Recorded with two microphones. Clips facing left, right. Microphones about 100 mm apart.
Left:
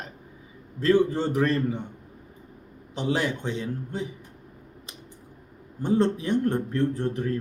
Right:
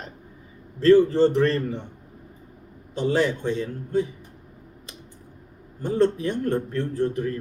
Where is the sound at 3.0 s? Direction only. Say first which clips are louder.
Right 4 dB; 15° left (ahead or behind).